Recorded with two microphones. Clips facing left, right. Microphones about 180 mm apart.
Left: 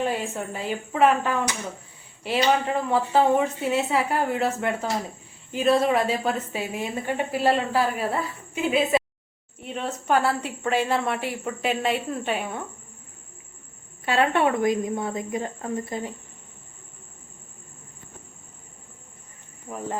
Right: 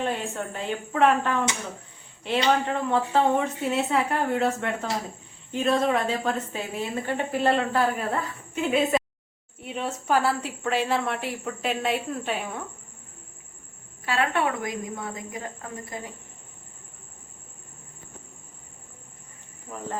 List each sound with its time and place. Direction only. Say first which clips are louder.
0.0 s a woman's voice: left 2 dB; 5° left (ahead or behind)
9.6 s a woman's voice: left 1 dB; 5° right (ahead or behind)
14.0 s speech: left 4 dB; 25° left (ahead or behind)
19.7 s cricket: left 3 dB; 20° left (ahead or behind)